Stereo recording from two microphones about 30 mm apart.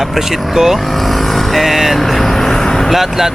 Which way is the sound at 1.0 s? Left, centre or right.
Centre.